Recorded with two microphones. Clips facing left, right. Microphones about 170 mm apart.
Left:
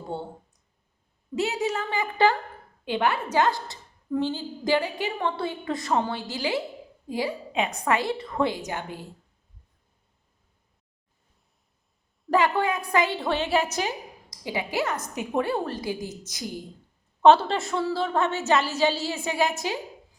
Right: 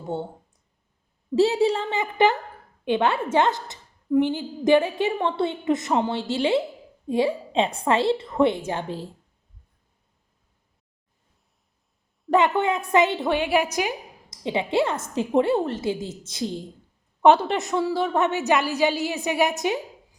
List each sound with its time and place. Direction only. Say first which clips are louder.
0.1 s a woman's voice: right 4 dB; 25° right (ahead or behind)
1.4 s a woman's voice: right 7 dB; 30° right (ahead or behind)
12.4 s a woman's voice: right 2 dB; 25° right (ahead or behind)
14.4 s a woman's voice: right 5 dB; 25° right (ahead or behind)